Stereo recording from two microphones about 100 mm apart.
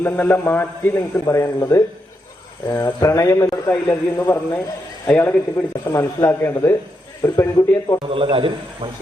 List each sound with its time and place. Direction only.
0.0 s a man's voice: 20° left (ahead or behind)
1.2 s speech: 35° left (ahead or behind)
3.7 s a man's voice: 20° left (ahead or behind)
5.8 s a man's voice: 30° left (ahead or behind)
8.1 s a man's voice: 65° right (ahead or behind)